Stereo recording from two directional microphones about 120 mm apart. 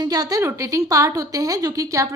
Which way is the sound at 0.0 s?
30° right (ahead or behind).